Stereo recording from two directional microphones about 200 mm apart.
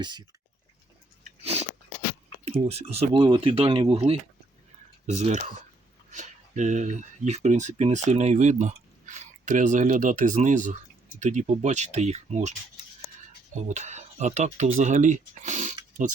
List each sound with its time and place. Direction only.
0.0 s speech: 20° right (ahead or behind)
1.4 s biting: 30° right (ahead or behind)
2.4 s speech: 30° right (ahead or behind)